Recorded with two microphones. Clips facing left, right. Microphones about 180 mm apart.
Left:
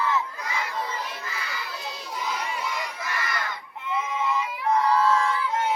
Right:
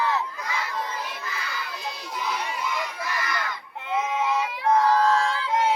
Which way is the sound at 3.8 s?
70° right (ahead or behind).